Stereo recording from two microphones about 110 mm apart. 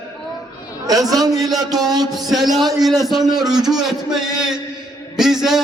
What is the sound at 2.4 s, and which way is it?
Speech, 35° right (ahead or behind).